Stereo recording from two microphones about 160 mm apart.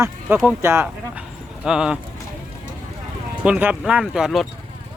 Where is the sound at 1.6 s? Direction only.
5° right (ahead or behind).